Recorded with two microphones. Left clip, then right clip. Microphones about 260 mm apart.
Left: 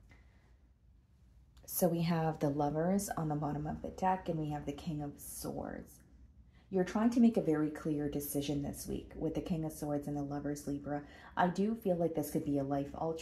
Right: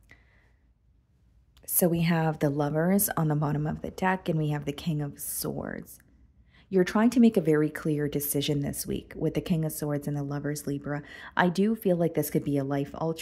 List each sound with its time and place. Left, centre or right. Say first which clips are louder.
1.6 s speech: right 6 dB; right